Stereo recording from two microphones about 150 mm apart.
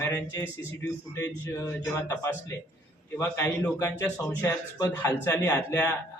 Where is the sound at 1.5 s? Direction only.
15° left (ahead or behind).